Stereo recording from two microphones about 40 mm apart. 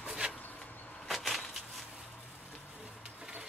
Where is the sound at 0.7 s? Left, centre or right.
Left.